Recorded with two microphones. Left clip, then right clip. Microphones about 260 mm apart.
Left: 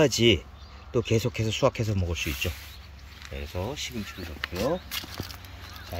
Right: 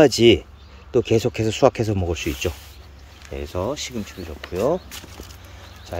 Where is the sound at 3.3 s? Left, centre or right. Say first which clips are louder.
Right 8 dB; centre.